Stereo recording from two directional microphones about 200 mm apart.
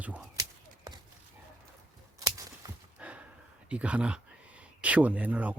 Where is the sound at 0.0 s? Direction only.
5° right (ahead or behind).